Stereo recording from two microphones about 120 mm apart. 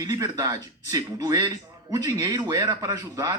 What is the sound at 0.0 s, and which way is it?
Speech, 30° right (ahead or behind).